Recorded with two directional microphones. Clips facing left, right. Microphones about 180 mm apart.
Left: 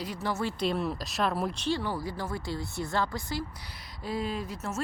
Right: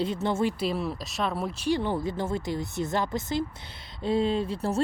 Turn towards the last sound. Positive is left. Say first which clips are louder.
# right 7 dB
turn(degrees=-30)  # may be behind; listen again after turning